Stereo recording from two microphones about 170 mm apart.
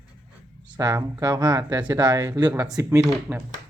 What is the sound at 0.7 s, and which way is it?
Speech, 20° right (ahead or behind).